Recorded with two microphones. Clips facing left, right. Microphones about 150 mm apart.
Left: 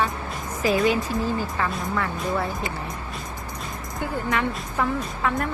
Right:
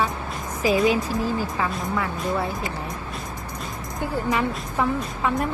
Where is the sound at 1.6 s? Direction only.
5° right (ahead or behind).